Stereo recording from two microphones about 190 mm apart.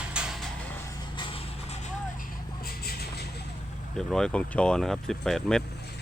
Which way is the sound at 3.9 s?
5° left (ahead or behind).